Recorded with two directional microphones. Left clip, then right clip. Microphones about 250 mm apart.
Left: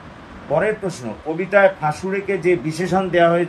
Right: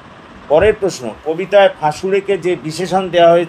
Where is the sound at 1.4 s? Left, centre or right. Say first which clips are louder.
Right 4 dB; right.